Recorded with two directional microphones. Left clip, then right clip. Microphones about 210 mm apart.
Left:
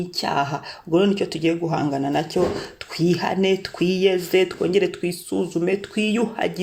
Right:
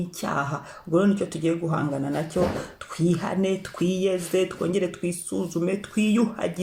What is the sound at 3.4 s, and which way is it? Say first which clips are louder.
Speech: left 5 dB; 20° left (ahead or behind).